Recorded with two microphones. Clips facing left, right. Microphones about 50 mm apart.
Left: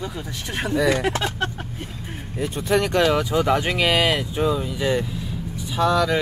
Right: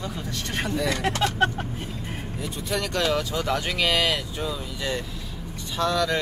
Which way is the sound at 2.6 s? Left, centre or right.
Left.